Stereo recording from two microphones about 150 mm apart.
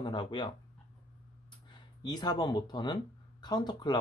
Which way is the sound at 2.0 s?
25° left (ahead or behind).